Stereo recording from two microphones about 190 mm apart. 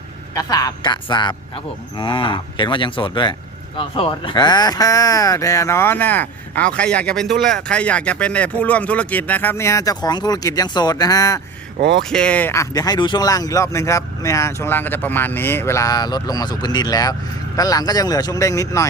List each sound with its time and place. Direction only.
0.3 s cattle: 20° left (ahead or behind)
3.8 s speech: 25° left (ahead or behind)
11.8 s speech: 60° right (ahead or behind)
12.1 s speech: 5° left (ahead or behind)
17.6 s cattle: 20° left (ahead or behind)